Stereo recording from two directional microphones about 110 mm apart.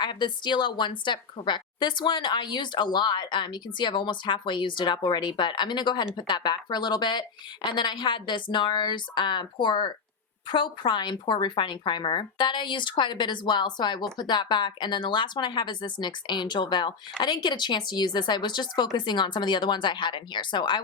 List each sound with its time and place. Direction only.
0.0 s speech: 45° left (ahead or behind)